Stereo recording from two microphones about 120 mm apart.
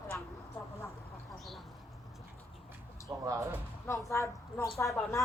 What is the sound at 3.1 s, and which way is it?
Speech, 25° right (ahead or behind).